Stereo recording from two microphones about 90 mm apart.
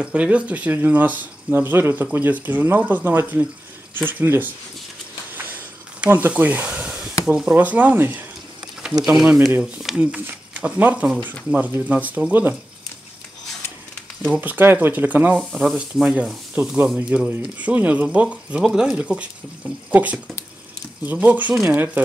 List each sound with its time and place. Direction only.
0.0 s speech: 15° right (ahead or behind)
5.3 s a sound: 20° right (ahead or behind)
7.2 s speech: 10° right (ahead or behind)
9.1 s sanding: 5° right (ahead or behind)
9.6 s speech: 10° right (ahead or behind)
14.3 s speech: 20° right (ahead or behind)
15.3 s sanding: centre (ahead or behind)
16.5 s speech: 20° right (ahead or behind)